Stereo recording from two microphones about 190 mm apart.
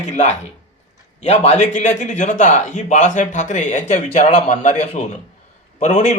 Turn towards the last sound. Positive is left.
turn(degrees=40)  # may be behind; listen again after turning